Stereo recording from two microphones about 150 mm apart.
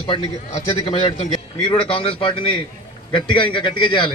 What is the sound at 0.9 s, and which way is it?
A man's voice, 40° left (ahead or behind).